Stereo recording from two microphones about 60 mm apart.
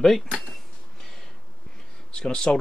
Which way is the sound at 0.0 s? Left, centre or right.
Centre.